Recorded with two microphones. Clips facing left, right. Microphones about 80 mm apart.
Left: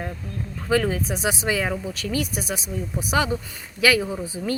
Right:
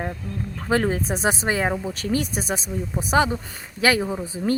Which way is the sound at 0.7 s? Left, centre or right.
Right.